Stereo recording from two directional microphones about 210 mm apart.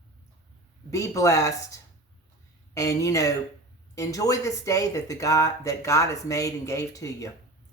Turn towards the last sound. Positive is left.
turn(degrees=15)  # may be behind; listen again after turning